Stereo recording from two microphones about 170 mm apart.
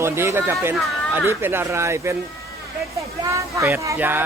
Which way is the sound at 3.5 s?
15° right (ahead or behind).